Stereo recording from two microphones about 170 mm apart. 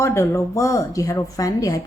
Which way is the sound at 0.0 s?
15° left (ahead or behind).